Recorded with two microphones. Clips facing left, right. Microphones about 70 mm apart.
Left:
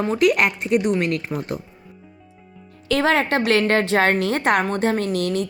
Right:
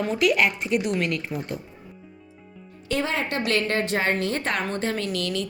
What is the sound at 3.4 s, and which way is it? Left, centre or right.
A woman's voice, left.